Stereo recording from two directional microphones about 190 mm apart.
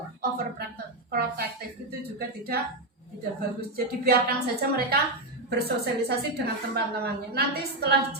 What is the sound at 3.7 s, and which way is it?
A woman's voice, 55° right (ahead or behind).